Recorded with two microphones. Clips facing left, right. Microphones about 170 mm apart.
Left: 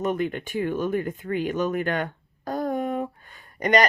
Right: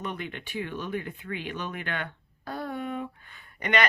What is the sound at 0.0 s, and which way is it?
Speech, 45° left (ahead or behind).